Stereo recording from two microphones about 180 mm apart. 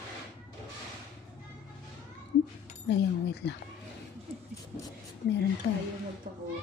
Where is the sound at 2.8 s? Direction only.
75° left (ahead or behind).